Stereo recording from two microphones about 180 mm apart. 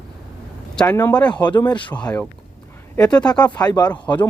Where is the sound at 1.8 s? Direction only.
5° left (ahead or behind).